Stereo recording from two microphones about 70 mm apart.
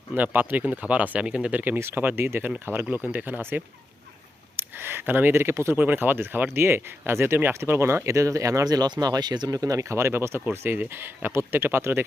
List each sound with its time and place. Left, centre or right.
0.1 s speech: right
1.8 s speech: right
4.5 s speech: right
5.7 s speech: right
9.5 s speech: right